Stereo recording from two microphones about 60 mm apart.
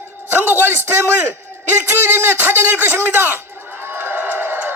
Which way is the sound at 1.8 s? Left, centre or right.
Right.